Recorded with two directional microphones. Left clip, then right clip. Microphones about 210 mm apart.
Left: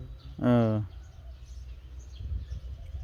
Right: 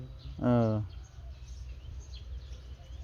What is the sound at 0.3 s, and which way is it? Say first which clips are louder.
Speech: left 3 dB; 15° left (ahead or behind).